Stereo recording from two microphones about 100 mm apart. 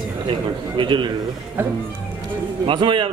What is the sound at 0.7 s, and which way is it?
Speech, 55° right (ahead or behind).